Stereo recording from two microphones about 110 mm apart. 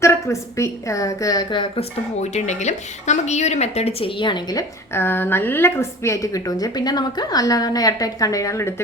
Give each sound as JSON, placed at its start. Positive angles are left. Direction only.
{"t": 0.0, "sound": "a woman's voice", "side_deg": 25}
{"t": 1.8, "sound": "a woman's voice", "side_deg": 90}
{"t": 4.2, "sound": "a woman's voice", "side_deg": 45}
{"t": 4.9, "sound": "a woman's voice", "side_deg": 20}